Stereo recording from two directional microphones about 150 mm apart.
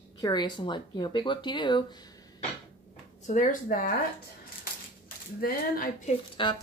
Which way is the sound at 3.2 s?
55° left (ahead or behind).